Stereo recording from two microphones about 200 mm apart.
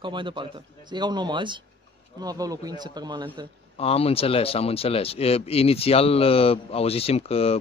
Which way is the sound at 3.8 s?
30° left (ahead or behind).